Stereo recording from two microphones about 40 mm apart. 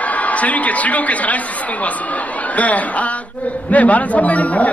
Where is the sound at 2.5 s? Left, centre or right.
Left.